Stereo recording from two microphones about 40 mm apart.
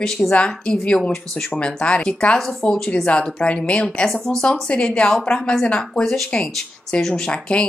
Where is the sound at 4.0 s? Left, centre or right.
Centre.